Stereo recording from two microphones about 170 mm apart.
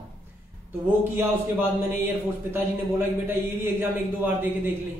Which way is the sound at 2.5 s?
10° right (ahead or behind).